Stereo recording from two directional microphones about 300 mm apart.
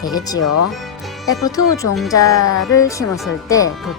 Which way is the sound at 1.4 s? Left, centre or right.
Centre.